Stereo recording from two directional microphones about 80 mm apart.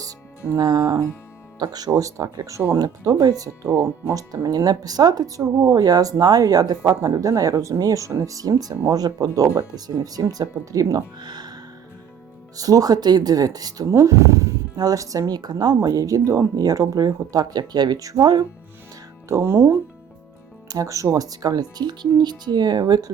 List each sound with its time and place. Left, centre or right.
0.0 s speech: right
11.2 s music: right
12.5 s speech: right
13.9 s speech: right
14.8 s speech: right
19.3 s speech: right
20.7 s speech: right